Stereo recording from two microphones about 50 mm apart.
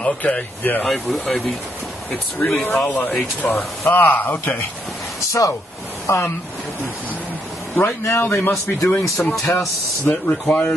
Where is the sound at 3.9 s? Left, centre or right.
Left.